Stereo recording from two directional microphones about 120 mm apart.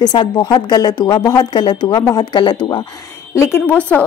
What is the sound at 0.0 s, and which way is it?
A woman's voice, 40° left (ahead or behind).